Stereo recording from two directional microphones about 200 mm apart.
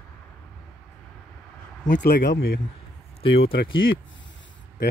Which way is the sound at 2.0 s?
45° left (ahead or behind).